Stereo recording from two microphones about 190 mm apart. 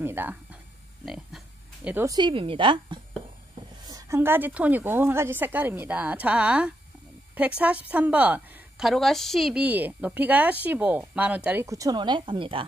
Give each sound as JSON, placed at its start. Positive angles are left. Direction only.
{"t": 0.0, "sound": "a woman's voice", "side_deg": -10}
{"t": 2.1, "sound": "a woman's voice", "side_deg": -25}